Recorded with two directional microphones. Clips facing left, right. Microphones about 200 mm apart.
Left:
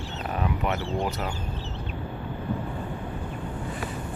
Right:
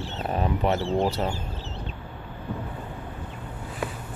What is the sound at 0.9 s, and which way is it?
Speech, 25° right (ahead or behind).